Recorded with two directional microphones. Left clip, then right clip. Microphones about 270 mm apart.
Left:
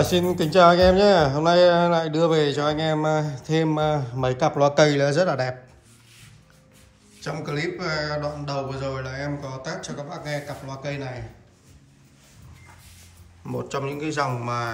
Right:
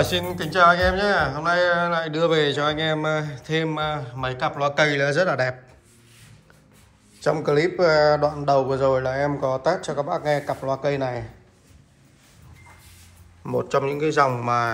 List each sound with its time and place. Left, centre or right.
0.0 s speech: centre
7.2 s speech: centre
13.5 s speech: centre